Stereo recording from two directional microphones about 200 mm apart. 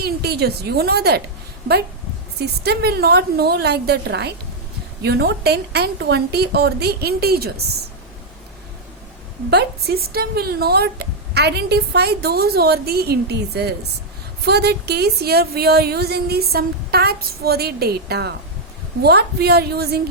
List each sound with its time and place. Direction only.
0.0 s a woman's voice: 55° right (ahead or behind)
2.4 s a woman's voice: 55° right (ahead or behind)
9.5 s speech: 55° right (ahead or behind)